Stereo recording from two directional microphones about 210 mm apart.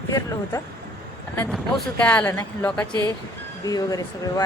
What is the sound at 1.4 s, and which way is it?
A woman's voice, 5° left (ahead or behind).